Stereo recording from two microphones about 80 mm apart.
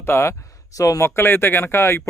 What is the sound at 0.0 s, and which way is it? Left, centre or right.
Speech, left.